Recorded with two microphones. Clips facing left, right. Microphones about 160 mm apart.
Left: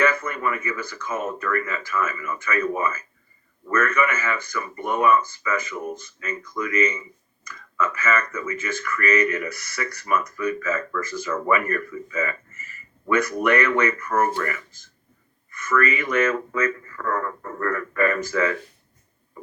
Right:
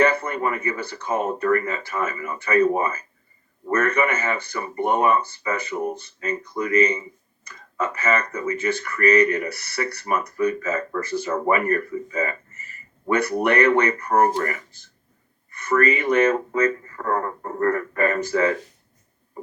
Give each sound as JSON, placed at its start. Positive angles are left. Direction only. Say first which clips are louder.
{"t": 0.0, "sound": "speech", "louder": "right 3 dB", "side_deg": -35}
{"t": 15.4, "sound": "a sound", "louder": "right 3 dB", "side_deg": -35}
{"t": 16.1, "sound": "speech", "louder": "right 3 dB", "side_deg": -35}